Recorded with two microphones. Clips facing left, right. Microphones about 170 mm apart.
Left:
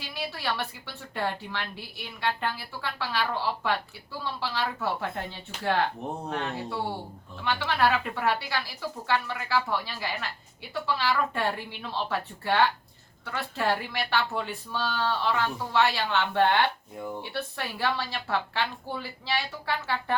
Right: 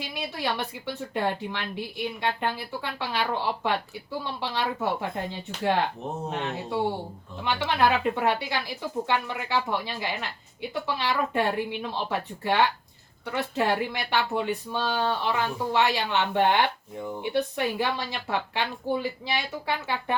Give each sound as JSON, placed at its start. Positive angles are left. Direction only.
{"t": 0.0, "sound": "speech", "side_deg": -20}